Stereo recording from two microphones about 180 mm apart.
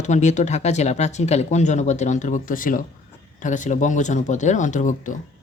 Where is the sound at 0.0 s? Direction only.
40° left (ahead or behind).